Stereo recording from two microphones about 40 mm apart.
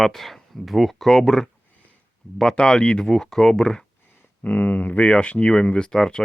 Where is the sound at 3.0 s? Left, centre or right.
Centre.